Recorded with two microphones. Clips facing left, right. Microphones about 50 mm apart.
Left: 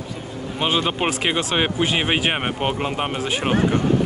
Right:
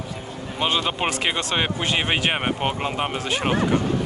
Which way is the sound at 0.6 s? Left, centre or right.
Centre.